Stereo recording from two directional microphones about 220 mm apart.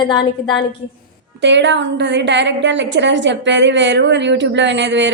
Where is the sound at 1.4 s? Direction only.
55° right (ahead or behind).